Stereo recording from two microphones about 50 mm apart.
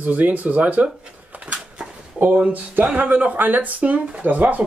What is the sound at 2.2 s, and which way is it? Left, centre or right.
Speech, right.